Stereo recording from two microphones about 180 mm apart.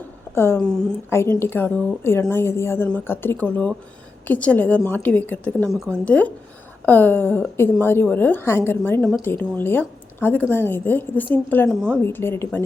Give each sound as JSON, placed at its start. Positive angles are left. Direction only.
{"t": 0.3, "sound": "a woman's voice", "side_deg": 15}